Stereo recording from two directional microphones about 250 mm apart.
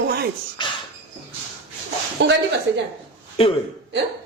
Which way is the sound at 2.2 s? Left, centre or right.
Right.